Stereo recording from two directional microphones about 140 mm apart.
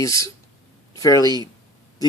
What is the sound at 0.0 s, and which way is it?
Speech, 25° left (ahead or behind).